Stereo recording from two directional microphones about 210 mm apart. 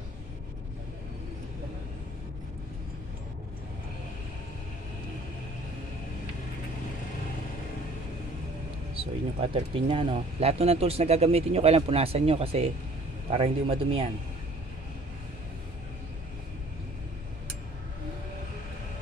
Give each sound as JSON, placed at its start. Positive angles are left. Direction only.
{"t": 8.9, "sound": "speech", "side_deg": -25}